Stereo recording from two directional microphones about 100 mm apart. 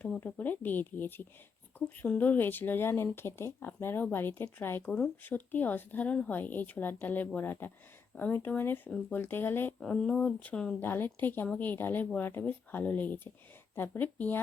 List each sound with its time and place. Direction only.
0.2 s speech: 15° left (ahead or behind)
4.9 s speech: 10° left (ahead or behind)
9.8 s speech: 10° left (ahead or behind)
10.8 s speech: 20° left (ahead or behind)